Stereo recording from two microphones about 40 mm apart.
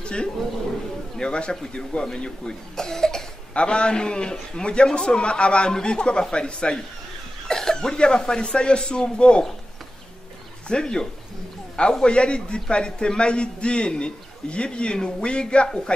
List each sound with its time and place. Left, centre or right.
0.0 s a man's voice: left
3.5 s a man's voice: left
10.7 s a man's voice: centre